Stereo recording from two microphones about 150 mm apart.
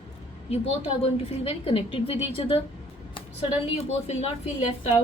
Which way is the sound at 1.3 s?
40° left (ahead or behind).